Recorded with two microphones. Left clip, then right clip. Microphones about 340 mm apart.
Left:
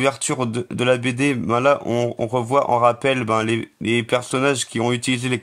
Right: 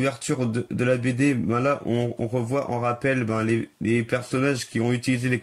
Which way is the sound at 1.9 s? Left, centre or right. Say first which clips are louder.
Left 5 dB; left.